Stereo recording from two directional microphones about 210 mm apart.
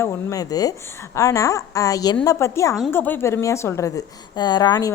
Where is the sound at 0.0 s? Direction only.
15° left (ahead or behind).